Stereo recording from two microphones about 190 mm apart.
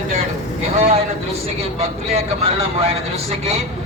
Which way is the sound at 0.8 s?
30° right (ahead or behind).